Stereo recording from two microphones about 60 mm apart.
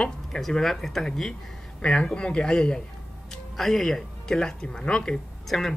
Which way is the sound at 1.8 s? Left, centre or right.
Centre.